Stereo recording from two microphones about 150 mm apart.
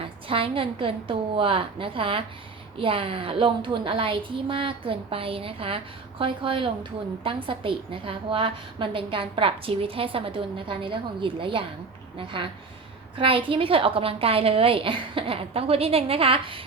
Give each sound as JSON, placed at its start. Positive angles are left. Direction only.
{"t": 0.0, "sound": "a woman's voice", "side_deg": -35}